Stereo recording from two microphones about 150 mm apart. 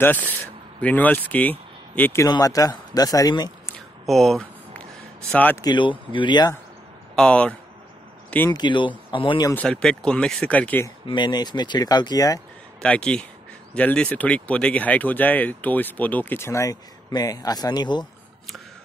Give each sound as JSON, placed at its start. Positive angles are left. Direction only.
{"t": 0.0, "sound": "speech", "side_deg": 10}
{"t": 2.2, "sound": "speech", "side_deg": 25}
{"t": 4.0, "sound": "a sound", "side_deg": 0}
{"t": 5.3, "sound": "speech", "side_deg": 10}
{"t": 5.6, "sound": "speech", "side_deg": 30}
{"t": 7.2, "sound": "speech", "side_deg": 5}
{"t": 8.5, "sound": "speech", "side_deg": 30}
{"t": 9.5, "sound": "speech", "side_deg": 10}
{"t": 11.1, "sound": "speech", "side_deg": 30}
{"t": 12.8, "sound": "speech", "side_deg": 5}